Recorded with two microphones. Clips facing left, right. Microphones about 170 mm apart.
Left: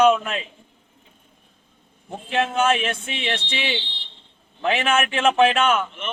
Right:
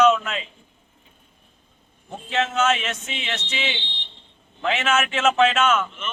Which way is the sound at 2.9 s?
30° left (ahead or behind).